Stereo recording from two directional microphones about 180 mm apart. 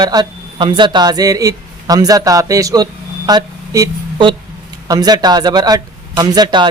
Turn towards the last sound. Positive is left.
turn(degrees=-25)  # may be behind; listen again after turning